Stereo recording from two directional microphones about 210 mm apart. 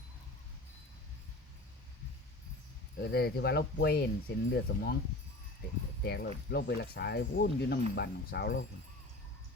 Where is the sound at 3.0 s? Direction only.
50° left (ahead or behind).